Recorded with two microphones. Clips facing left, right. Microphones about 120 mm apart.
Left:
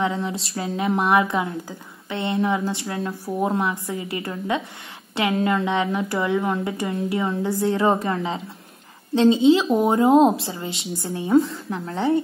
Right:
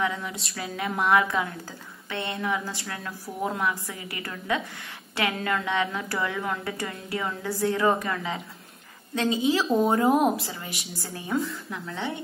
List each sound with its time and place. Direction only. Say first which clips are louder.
0.0 s a woman's voice: left 5 dB; 25° left (ahead or behind)